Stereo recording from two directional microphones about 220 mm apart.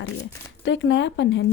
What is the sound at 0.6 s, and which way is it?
Speech, 55° left (ahead or behind).